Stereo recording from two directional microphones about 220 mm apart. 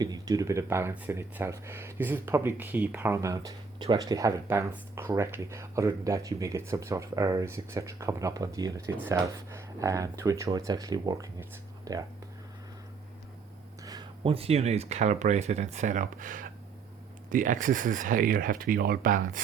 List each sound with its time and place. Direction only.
0.0 s speech: 15° right (ahead or behind)
13.8 s speech: 20° right (ahead or behind); by 19.4 s 40° right (ahead or behind)